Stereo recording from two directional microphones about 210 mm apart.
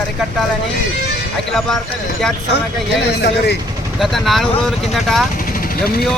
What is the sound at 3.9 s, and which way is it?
Speech, centre (ahead or behind).